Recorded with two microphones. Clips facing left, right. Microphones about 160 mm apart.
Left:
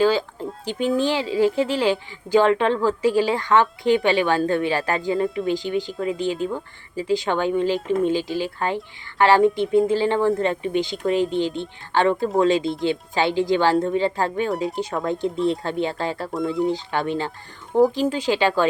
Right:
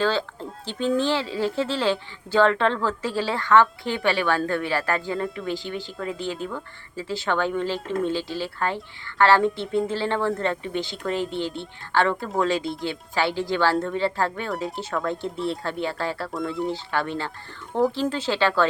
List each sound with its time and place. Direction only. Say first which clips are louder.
0.0 s speech: left 5 dB; 10° left (ahead or behind)
16.3 s speech: left 5 dB; centre (ahead or behind)
16.6 s speech: left 4 dB; 20° left (ahead or behind)